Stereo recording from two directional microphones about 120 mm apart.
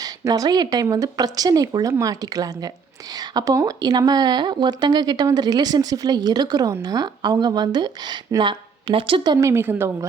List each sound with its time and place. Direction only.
0.0 s speech: 30° right (ahead or behind)
9.5 s a woman's voice: 20° right (ahead or behind)